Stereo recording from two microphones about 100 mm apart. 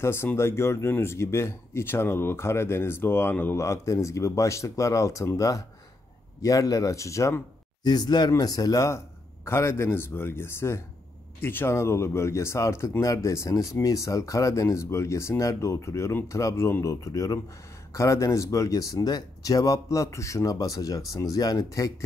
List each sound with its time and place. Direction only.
0.0 s speech: 25° left (ahead or behind)
7.8 s speech: 45° left (ahead or behind)